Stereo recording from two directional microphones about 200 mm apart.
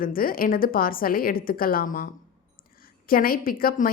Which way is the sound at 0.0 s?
45° left (ahead or behind).